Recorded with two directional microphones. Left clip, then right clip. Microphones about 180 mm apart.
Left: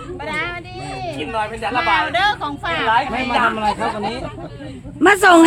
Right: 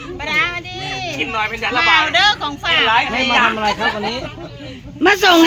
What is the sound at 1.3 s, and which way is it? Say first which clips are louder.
Speech: right 1 dB; 25° left (ahead or behind).